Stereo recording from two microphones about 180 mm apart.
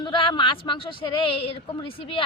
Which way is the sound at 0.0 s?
25° left (ahead or behind).